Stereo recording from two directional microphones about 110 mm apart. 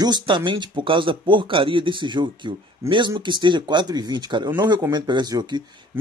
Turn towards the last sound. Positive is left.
turn(degrees=-40)  # may be behind; listen again after turning